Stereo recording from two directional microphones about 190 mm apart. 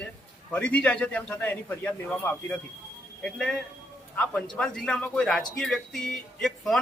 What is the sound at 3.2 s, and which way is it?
Speech, 5° left (ahead or behind).